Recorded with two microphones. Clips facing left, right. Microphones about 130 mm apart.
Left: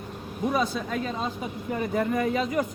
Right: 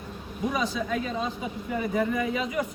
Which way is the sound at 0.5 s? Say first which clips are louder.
Left 1 dB; 45° left (ahead or behind).